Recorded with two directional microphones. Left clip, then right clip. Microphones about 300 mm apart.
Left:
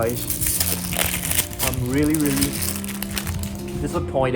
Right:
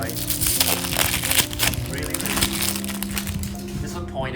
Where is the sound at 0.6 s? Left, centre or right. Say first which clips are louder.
Right 4 dB; centre.